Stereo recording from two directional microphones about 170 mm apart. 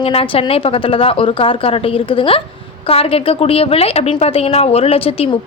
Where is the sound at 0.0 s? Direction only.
35° left (ahead or behind).